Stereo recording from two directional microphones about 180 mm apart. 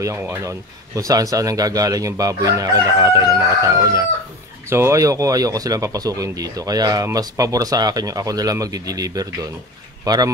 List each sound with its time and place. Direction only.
0.0 s speech: 15° right (ahead or behind)
3.6 s chicken: 20° right (ahead or behind)
4.6 s speech: 15° right (ahead or behind)